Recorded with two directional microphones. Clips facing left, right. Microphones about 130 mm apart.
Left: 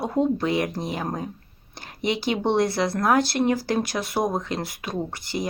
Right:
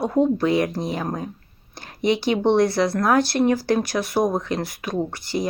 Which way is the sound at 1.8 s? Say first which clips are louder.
Right 5 dB; 20° left (ahead or behind).